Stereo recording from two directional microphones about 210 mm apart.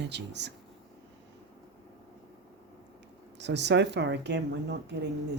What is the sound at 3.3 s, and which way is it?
Speech, 55° right (ahead or behind).